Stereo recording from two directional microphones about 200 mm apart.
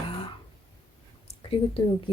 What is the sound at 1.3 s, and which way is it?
Speech, 30° left (ahead or behind).